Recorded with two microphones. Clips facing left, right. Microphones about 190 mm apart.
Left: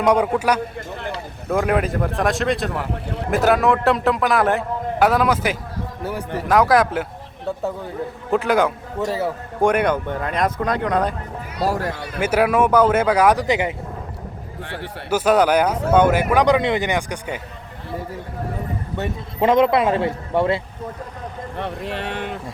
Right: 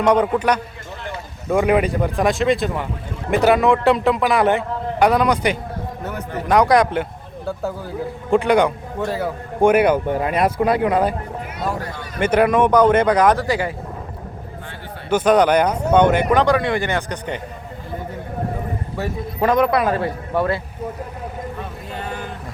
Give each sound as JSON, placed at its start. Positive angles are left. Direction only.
{"t": 0.3, "sound": "a man's voice", "side_deg": 10}
{"t": 2.9, "sound": "a sound", "side_deg": 65}
{"t": 3.3, "sound": "a man's voice", "side_deg": 0}
{"t": 12.2, "sound": "speech", "side_deg": 5}
{"t": 15.1, "sound": "speech", "side_deg": 5}
{"t": 19.4, "sound": "a man's voice", "side_deg": 25}
{"t": 21.6, "sound": "speech", "side_deg": 75}